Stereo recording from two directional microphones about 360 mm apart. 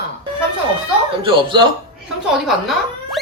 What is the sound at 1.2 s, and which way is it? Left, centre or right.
Speech, centre.